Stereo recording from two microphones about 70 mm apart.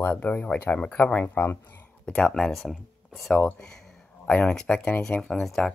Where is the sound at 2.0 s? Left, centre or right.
Centre.